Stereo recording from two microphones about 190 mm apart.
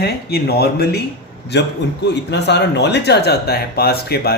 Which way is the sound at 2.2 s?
65° left (ahead or behind).